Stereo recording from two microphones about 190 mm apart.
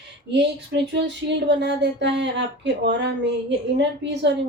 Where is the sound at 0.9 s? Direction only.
65° right (ahead or behind).